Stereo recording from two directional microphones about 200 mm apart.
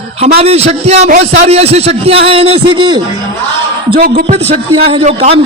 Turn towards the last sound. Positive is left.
turn(degrees=-30)  # may be behind; listen again after turning